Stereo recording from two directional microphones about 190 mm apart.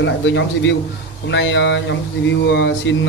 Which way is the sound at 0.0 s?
70° left (ahead or behind).